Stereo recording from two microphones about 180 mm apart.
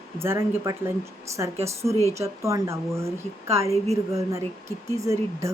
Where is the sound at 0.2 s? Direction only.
15° right (ahead or behind).